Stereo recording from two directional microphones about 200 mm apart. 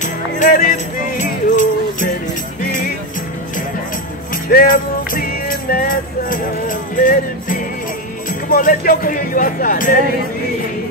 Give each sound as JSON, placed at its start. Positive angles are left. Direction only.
{"t": 0.0, "sound": "music", "side_deg": 40}
{"t": 4.3, "sound": "music", "side_deg": 45}
{"t": 8.3, "sound": "speech", "side_deg": 45}